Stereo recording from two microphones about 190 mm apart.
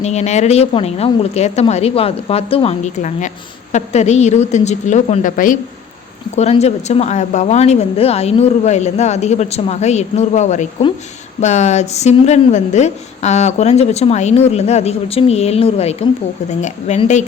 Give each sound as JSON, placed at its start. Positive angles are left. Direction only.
{"t": 0.0, "sound": "a woman's voice", "side_deg": 35}